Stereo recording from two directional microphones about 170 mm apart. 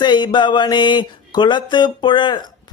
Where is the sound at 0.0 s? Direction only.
25° left (ahead or behind).